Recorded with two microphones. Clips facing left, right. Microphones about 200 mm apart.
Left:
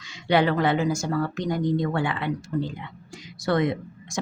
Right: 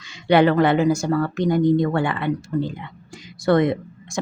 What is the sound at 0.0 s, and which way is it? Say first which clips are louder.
Speech: right 5 dB; 60° right (ahead or behind).